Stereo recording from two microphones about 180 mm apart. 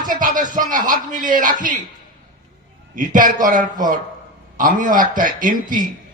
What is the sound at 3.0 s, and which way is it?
A man's voice, 45° right (ahead or behind).